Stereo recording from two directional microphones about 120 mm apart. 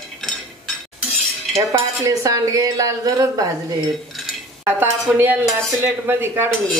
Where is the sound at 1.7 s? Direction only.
25° right (ahead or behind).